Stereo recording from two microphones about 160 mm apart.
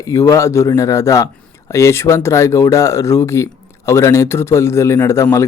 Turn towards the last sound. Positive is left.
turn(degrees=20)  # may be behind; listen again after turning